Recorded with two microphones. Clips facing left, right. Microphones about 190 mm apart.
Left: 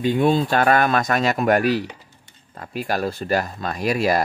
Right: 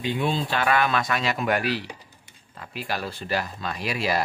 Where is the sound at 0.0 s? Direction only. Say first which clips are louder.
Left 8 dB; 50° left (ahead or behind).